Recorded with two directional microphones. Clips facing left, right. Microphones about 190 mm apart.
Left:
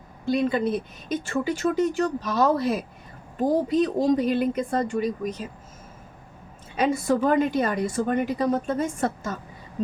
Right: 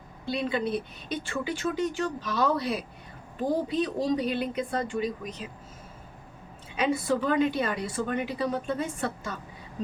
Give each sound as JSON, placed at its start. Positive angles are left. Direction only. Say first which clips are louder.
{"t": 0.3, "sound": "a woman's voice", "louder": "left 6 dB", "side_deg": 45}
{"t": 6.7, "sound": "a woman's voice", "louder": "left 4 dB", "side_deg": 45}